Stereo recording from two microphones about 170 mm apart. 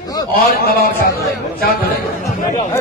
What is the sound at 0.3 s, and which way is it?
Speech, 60° left (ahead or behind).